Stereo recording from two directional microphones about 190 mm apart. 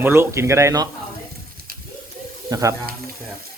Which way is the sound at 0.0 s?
10° right (ahead or behind).